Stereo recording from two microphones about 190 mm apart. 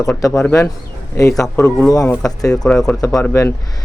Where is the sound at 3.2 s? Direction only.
15° left (ahead or behind).